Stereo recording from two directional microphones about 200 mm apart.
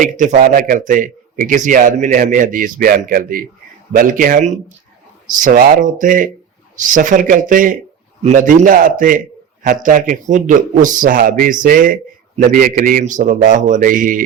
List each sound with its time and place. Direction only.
0.0 s a man's voice: 40° right (ahead or behind)